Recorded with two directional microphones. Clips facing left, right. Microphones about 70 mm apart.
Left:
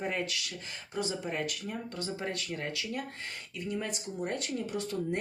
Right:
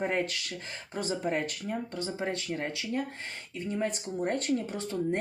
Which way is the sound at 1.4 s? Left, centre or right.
Right.